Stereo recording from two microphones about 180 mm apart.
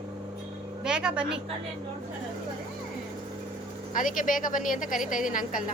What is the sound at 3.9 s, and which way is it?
Speech, 50° left (ahead or behind).